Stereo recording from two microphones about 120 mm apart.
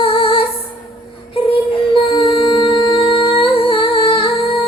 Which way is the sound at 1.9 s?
45° left (ahead or behind).